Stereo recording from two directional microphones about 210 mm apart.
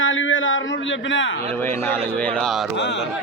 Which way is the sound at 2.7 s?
60° left (ahead or behind).